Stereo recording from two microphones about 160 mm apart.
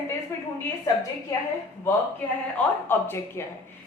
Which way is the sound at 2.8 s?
15° left (ahead or behind).